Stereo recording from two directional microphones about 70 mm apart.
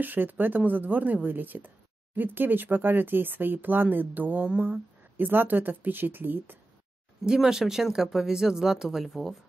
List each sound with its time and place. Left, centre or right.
0.0 s speech: right
7.2 s speech: centre